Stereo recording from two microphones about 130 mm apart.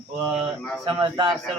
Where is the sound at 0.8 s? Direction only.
40° right (ahead or behind).